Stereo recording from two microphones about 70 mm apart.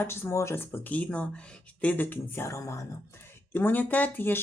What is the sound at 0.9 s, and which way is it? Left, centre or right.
Speech, centre.